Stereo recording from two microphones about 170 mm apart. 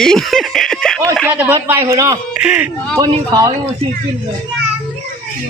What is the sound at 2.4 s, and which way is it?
Speech, 5° right (ahead or behind).